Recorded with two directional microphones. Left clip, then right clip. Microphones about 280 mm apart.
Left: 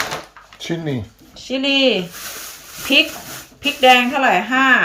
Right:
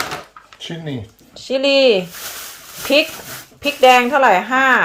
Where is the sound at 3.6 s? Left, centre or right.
Centre.